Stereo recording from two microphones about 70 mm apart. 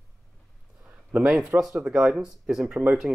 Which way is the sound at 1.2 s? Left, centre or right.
Centre.